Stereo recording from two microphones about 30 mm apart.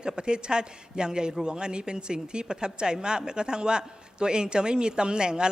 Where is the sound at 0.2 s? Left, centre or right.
Right.